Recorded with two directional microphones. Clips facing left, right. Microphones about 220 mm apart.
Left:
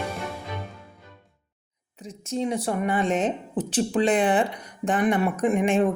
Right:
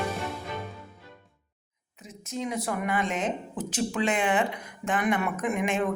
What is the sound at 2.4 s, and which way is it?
A woman's voice, 30° left (ahead or behind).